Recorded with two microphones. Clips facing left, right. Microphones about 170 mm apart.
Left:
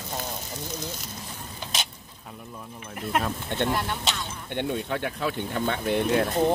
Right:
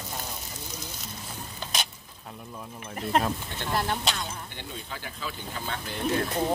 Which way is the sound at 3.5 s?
60° left (ahead or behind).